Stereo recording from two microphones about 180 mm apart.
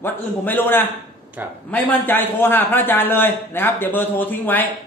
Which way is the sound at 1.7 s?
10° left (ahead or behind).